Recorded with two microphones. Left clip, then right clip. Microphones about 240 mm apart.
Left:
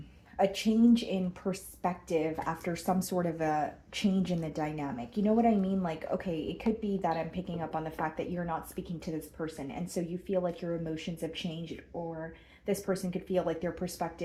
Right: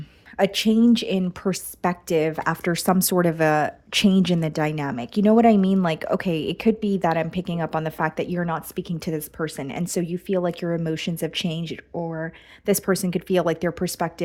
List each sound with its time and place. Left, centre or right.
0.3 s a woman's voice: right